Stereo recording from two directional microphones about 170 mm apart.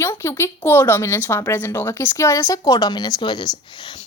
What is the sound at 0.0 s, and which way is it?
Speech, 15° left (ahead or behind).